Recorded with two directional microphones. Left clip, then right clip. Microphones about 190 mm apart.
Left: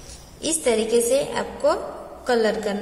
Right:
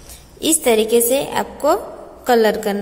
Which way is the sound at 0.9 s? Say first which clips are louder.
Right 4 dB; 40° right (ahead or behind).